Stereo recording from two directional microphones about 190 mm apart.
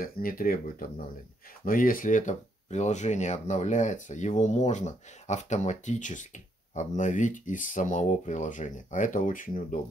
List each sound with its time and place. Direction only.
0.0 s speech: 50° left (ahead or behind)